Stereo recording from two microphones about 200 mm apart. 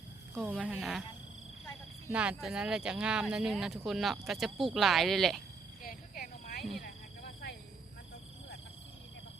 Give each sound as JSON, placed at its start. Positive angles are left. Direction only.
{"t": 0.4, "sound": "speech", "side_deg": -5}
{"t": 2.0, "sound": "speech", "side_deg": -5}
{"t": 5.8, "sound": "a sound", "side_deg": 45}